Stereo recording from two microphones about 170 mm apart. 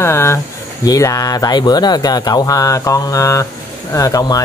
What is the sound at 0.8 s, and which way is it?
Speech, 20° left (ahead or behind).